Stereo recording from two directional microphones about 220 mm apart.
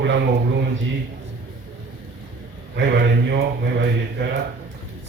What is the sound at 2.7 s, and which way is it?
A man's voice, 50° right (ahead or behind).